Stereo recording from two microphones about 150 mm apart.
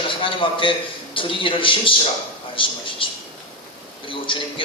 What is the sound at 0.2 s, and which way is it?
A man's voice, 35° left (ahead or behind).